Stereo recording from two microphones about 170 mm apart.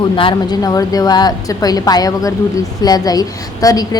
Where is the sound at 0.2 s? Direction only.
25° left (ahead or behind).